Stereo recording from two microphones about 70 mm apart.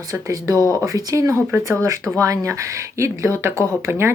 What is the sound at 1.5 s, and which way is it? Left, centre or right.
Speech, right.